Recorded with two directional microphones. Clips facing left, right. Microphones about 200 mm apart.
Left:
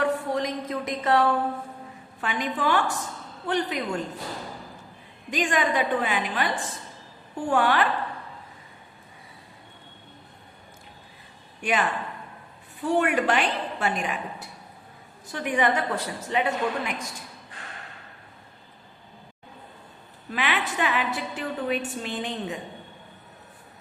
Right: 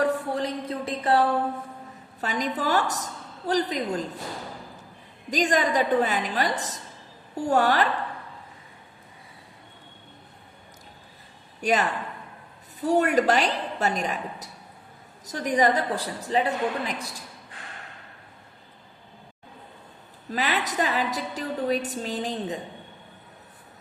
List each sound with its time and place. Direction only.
0.0 s a sound: 35° right (ahead or behind)
2.2 s a woman's voice: 40° right (ahead or behind)
5.3 s a woman's voice: 40° right (ahead or behind)
11.6 s a woman's voice: 40° right (ahead or behind)
20.3 s a woman's voice: 40° right (ahead or behind)